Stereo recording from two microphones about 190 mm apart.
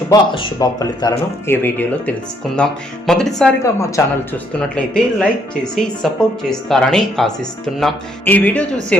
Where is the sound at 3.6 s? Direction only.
15° left (ahead or behind).